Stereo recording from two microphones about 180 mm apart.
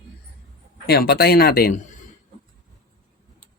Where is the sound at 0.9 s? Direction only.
60° left (ahead or behind).